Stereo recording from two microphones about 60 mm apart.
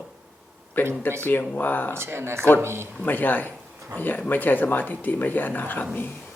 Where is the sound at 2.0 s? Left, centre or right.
Right.